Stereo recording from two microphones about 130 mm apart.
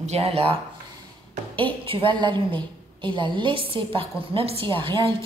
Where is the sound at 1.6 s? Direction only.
40° right (ahead or behind).